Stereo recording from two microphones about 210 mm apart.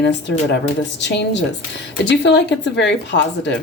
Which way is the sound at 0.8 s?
55° left (ahead or behind).